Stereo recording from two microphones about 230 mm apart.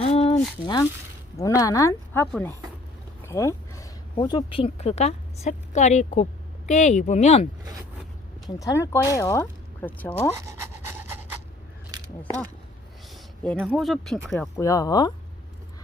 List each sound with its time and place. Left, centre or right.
0.0 s a sound: left
0.6 s a woman's voice: centre
3.2 s a sound: centre
4.1 s a woman's voice: centre
8.4 s speech: centre
10.3 s pant: centre
13.4 s speech: centre
14.6 s speech: centre